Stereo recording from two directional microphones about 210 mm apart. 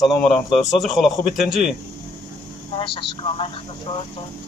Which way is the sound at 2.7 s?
25° left (ahead or behind).